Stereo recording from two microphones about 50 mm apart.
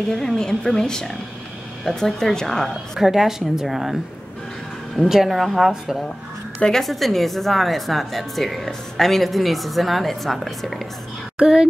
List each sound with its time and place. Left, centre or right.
0.1 s a woman's voice: centre
3.0 s a woman's voice: centre
5.0 s speech: centre
6.8 s speech: centre
11.3 s speech: centre